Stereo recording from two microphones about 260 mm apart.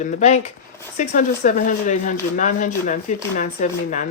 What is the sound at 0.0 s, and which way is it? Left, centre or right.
Speech, left.